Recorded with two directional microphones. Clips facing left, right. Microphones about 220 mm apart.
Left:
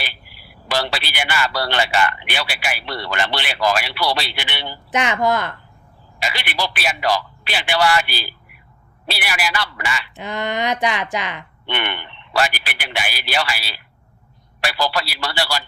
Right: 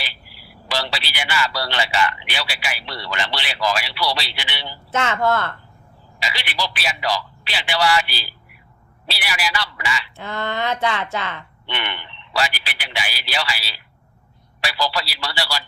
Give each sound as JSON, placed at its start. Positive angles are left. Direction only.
{"t": 0.0, "sound": "speech", "side_deg": 55}
{"t": 4.9, "sound": "speech", "side_deg": 15}
{"t": 6.1, "sound": "speech", "side_deg": 55}
{"t": 10.2, "sound": "speech", "side_deg": 15}
{"t": 11.6, "sound": "speech", "side_deg": 55}